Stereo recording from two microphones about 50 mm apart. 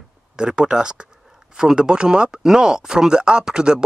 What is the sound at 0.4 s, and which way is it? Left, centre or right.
Speech, centre.